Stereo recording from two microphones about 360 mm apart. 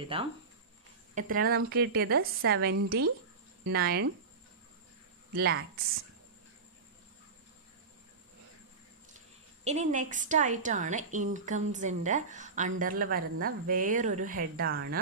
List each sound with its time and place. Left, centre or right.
0.1 s a woman's voice: centre
5.3 s a woman's voice: right
9.7 s a woman's voice: centre